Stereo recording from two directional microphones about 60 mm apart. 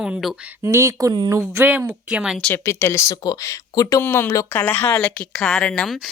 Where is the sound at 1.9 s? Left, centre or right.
Centre.